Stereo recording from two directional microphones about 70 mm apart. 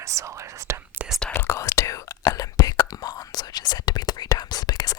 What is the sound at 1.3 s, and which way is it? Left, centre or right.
Whispering, left.